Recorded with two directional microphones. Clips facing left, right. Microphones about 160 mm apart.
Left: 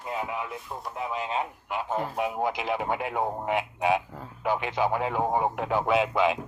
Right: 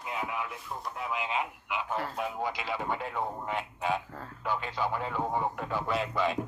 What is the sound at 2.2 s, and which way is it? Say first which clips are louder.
Speech: left 5 dB; 55° left (ahead or behind).